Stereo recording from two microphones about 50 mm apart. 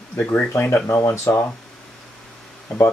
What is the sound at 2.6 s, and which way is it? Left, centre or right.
Speech, left.